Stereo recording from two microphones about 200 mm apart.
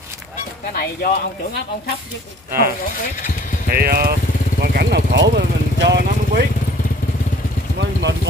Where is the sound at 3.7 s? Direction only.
50° right (ahead or behind).